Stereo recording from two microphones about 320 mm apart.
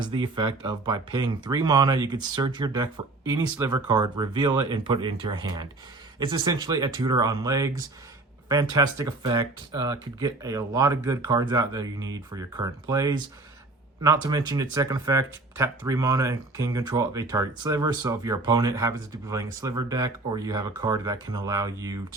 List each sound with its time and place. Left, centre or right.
0.0 s speech: centre